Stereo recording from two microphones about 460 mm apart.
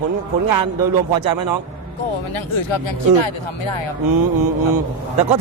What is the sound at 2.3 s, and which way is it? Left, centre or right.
Speech, left.